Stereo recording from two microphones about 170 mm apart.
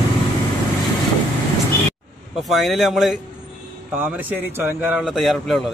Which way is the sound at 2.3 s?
Centre (ahead or behind).